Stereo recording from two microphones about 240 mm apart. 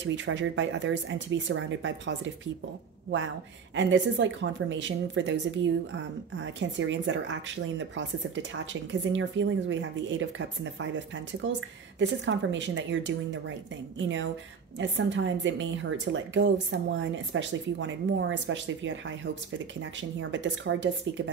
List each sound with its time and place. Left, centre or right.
0.0 s a woman's voice: right
3.7 s a woman's voice: right
6.4 s a woman's voice: right